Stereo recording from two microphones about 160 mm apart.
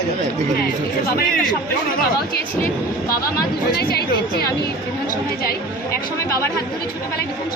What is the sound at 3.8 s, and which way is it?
Speech, 75° left (ahead or behind).